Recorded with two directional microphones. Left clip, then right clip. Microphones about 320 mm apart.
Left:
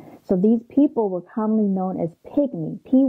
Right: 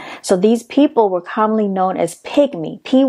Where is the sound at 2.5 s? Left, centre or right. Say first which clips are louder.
Right 5 dB; right.